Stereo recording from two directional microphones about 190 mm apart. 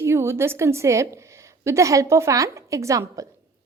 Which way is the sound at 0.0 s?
15° right (ahead or behind).